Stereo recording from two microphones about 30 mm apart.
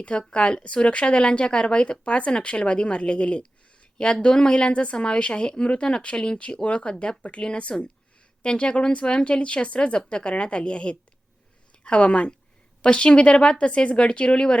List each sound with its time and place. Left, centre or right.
0.1 s speech: left
4.9 s a woman's voice: left
7.2 s a woman's voice: left
13.7 s a woman's voice: left
13.9 s speech: left